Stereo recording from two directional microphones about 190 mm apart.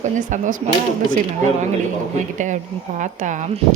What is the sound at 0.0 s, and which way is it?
Speech, 40° right (ahead or behind).